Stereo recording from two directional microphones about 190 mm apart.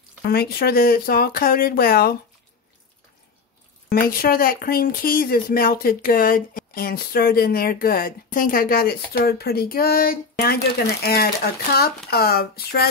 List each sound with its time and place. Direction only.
0.3 s speech: 55° left (ahead or behind)
3.9 s speech: 50° left (ahead or behind)